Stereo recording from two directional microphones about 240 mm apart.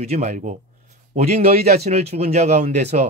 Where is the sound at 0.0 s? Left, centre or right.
Right.